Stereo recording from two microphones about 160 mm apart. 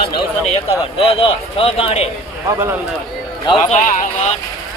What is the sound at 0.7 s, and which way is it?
Speech, 35° left (ahead or behind).